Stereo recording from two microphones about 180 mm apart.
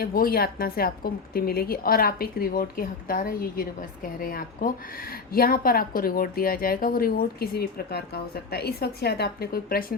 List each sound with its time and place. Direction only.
0.0 s a woman's voice: 55° left (ahead or behind)